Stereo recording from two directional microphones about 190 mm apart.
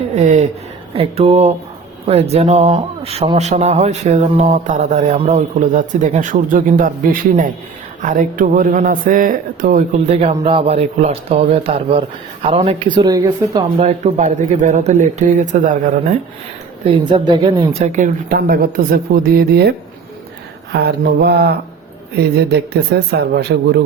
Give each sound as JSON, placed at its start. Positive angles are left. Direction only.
{"t": 0.1, "sound": "a woman's voice", "side_deg": -40}
{"t": 10.1, "sound": "a man's voice", "side_deg": -30}
{"t": 13.8, "sound": "speech", "side_deg": -40}
{"t": 16.9, "sound": "a woman's voice", "side_deg": -25}
{"t": 20.7, "sound": "speech", "side_deg": -60}